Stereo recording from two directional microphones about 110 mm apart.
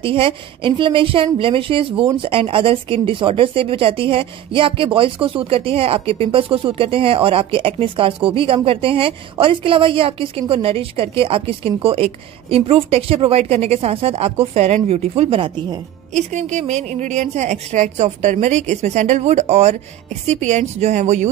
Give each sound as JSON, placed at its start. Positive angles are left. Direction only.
{"t": 0.0, "sound": "a woman's voice", "side_deg": -55}
{"t": 16.1, "sound": "speech", "side_deg": -90}